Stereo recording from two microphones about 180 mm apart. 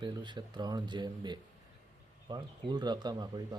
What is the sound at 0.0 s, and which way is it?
Speech, 25° right (ahead or behind).